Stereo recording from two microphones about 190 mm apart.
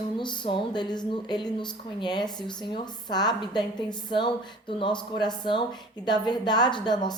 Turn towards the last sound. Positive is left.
turn(degrees=25)  # may be behind; listen again after turning